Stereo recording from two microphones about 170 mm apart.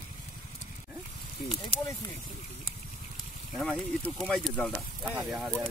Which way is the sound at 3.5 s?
Centre (ahead or behind).